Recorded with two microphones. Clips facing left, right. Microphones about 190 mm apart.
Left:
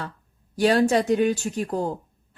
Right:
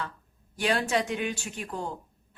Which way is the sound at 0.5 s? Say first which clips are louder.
Left 8 dB; 40° left (ahead or behind).